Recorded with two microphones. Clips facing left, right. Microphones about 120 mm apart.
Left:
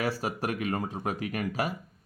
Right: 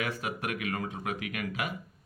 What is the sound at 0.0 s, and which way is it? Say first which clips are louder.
Speech: left 4 dB; 35° left (ahead or behind).